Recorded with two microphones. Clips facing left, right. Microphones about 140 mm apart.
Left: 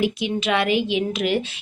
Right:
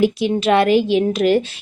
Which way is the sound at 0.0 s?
40° right (ahead or behind).